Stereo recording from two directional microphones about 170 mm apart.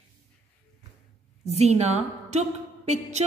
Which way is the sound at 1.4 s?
40° right (ahead or behind).